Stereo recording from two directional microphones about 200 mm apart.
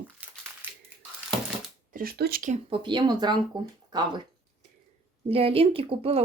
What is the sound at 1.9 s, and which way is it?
Speech, 45° right (ahead or behind).